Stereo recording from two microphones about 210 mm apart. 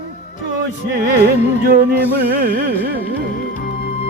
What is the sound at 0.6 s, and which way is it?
Music, 50° right (ahead or behind).